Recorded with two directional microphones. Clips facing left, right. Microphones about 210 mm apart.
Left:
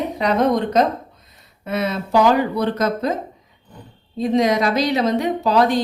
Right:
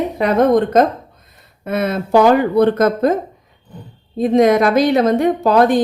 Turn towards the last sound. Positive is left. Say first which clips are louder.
# right 4 dB
turn(degrees=-50)  # may be behind; listen again after turning